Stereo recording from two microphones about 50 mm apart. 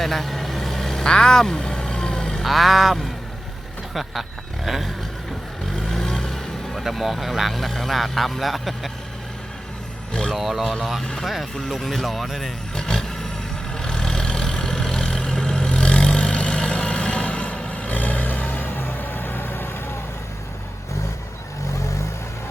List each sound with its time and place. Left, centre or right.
0.0 s vehicle: centre
2.4 s speech: centre
5.7 s vehicle: centre
6.7 s speech: centre
10.1 s speech: centre
10.3 s speech: centre
12.8 s vehicle: centre; by 19.7 s left